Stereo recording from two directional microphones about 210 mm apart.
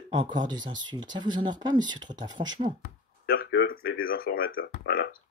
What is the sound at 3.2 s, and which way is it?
Speech, 45° left (ahead or behind).